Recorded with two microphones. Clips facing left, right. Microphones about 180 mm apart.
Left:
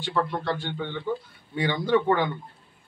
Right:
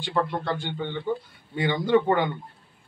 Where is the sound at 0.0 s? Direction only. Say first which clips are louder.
Even; 20° right (ahead or behind).